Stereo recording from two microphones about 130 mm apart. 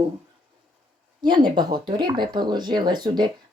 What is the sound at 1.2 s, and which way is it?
Speech, 35° right (ahead or behind).